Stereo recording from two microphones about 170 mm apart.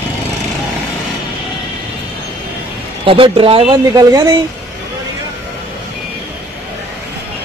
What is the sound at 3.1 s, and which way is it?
Speech, 30° right (ahead or behind).